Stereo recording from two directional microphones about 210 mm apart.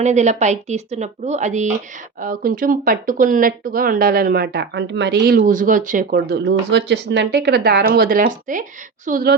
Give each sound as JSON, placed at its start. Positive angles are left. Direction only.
{"t": 0.0, "sound": "speech", "side_deg": -35}